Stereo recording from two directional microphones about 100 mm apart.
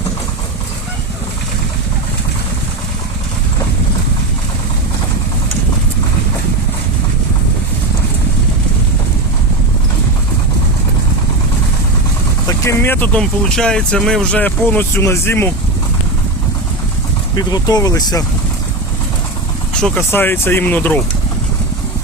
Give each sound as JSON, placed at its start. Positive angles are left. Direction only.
{"t": 12.5, "sound": "speech", "side_deg": 30}
{"t": 13.1, "sound": "speech", "side_deg": 5}
{"t": 17.3, "sound": "speech", "side_deg": 40}
{"t": 20.1, "sound": "speech", "side_deg": 20}